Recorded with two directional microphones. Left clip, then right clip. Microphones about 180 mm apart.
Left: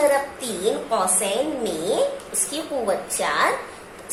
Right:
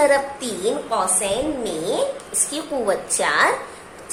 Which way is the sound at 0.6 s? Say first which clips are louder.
Even; 15° right (ahead or behind).